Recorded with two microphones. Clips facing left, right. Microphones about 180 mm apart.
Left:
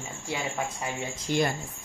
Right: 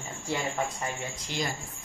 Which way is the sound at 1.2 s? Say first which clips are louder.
Left 8 dB; 55° left (ahead or behind).